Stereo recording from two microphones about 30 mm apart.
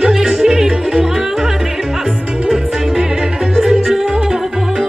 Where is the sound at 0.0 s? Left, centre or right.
Right.